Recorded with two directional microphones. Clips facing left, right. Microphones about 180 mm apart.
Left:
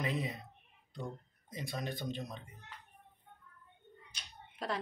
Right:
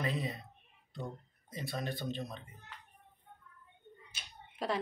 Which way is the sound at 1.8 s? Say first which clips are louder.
Right 1 dB; 15° left (ahead or behind).